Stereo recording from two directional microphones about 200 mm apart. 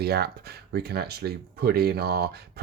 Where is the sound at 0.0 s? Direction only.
50° right (ahead or behind).